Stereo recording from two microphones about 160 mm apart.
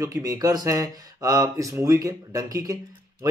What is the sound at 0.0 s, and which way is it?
Speech, 20° right (ahead or behind).